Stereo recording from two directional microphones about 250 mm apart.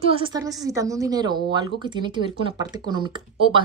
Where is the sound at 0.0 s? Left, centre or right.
Right.